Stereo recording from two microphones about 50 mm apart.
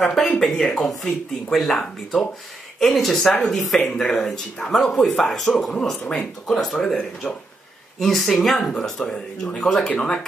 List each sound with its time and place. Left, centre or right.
0.1 s speech: centre
3.8 s speech: centre